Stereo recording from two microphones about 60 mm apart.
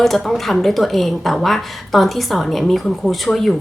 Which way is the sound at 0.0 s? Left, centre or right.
Centre.